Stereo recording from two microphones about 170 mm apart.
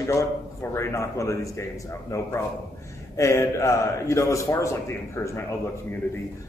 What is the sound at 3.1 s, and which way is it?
A man's voice, 15° left (ahead or behind).